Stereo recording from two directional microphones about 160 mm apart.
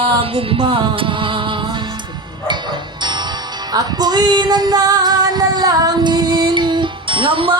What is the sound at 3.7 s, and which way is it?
Music, 25° right (ahead or behind).